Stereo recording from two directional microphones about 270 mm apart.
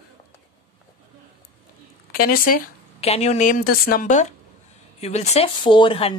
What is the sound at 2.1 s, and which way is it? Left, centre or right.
Speech, left.